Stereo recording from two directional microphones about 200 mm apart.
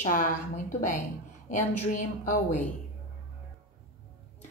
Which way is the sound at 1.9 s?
40° left (ahead or behind).